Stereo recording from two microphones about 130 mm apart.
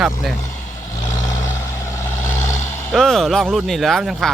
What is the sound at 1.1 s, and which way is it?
Vehicle, 25° left (ahead or behind).